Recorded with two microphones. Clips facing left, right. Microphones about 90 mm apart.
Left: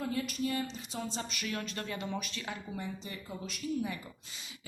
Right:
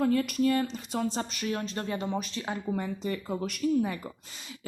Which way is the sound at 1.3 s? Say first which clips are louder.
Right 6 dB; 35° right (ahead or behind).